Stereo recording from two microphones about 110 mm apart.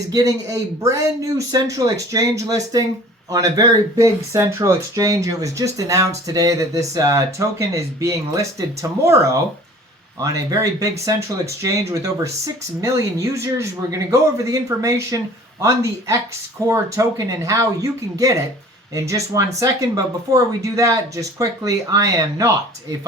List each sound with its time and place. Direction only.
0.1 s speech: 35° right (ahead or behind)